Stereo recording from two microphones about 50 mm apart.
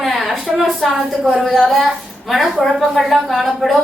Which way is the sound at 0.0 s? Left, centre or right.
Centre.